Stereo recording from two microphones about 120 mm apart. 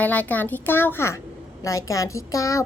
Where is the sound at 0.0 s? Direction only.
15° left (ahead or behind).